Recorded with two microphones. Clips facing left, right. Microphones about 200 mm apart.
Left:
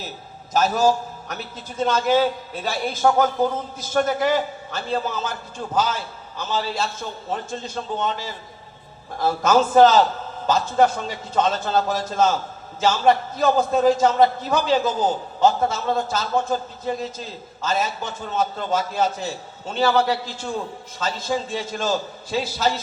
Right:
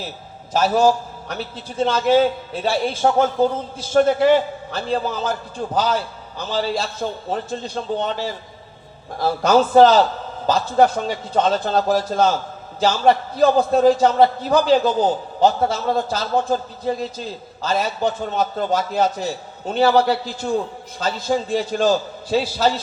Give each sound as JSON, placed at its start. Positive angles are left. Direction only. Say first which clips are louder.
{"t": 0.5, "sound": "a man's voice", "louder": "right 3 dB", "side_deg": -30}